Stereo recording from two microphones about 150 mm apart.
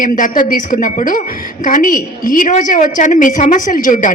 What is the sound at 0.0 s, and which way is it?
A woman's voice, 60° left (ahead or behind).